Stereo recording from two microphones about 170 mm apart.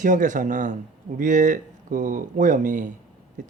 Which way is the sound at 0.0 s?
50° right (ahead or behind).